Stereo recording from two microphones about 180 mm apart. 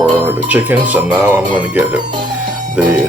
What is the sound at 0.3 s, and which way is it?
Speech, 10° right (ahead or behind).